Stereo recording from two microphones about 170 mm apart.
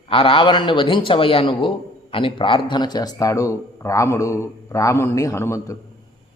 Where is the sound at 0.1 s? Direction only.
30° left (ahead or behind).